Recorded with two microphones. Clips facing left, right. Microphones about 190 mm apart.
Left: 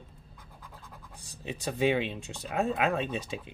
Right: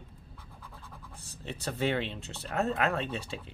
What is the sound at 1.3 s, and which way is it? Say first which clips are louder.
Speech: left 2 dB; 15° left (ahead or behind).